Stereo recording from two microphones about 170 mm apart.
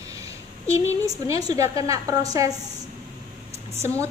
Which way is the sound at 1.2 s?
20° right (ahead or behind).